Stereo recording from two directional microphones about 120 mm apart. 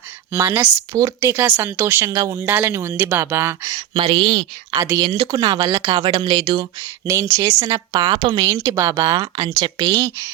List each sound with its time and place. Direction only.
0.3 s a woman's voice: 20° right (ahead or behind)
3.8 s a woman's voice: 50° right (ahead or behind)
7.0 s speech: 25° right (ahead or behind)
7.9 s speech: 50° right (ahead or behind)
8.4 s a woman's voice: 25° right (ahead or behind); by 9.9 s 40° right (ahead or behind)